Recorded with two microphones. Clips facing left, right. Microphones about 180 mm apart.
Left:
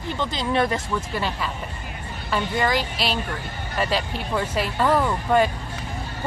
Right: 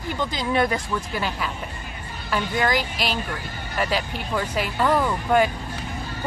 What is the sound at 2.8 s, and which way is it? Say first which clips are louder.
Speech: left 1 dB; 30° left (ahead or behind).